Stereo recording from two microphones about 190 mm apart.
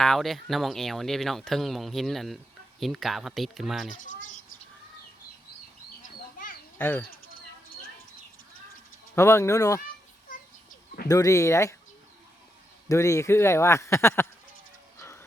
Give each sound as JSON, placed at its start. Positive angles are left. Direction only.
{"t": 0.0, "sound": "speech", "side_deg": 0}
{"t": 6.0, "sound": "a sound", "side_deg": 45}
{"t": 6.7, "sound": "speech", "side_deg": 10}
{"t": 9.1, "sound": "speech", "side_deg": 15}
{"t": 11.1, "sound": "speech", "side_deg": 15}
{"t": 12.9, "sound": "speech", "side_deg": 15}
{"t": 15.0, "sound": "a sound", "side_deg": 15}